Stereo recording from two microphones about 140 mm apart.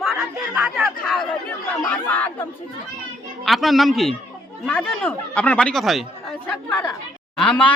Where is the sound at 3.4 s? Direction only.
Centre (ahead or behind).